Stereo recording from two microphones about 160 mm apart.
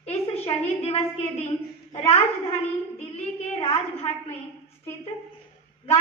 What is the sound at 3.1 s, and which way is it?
A woman's voice, 40° left (ahead or behind).